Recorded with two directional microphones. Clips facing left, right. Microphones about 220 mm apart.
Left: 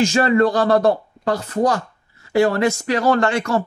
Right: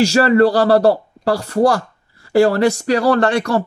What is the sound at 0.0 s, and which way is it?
A man's voice, 35° right (ahead or behind).